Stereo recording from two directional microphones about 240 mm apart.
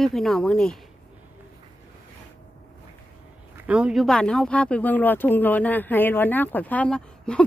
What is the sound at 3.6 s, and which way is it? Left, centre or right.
Speech, centre.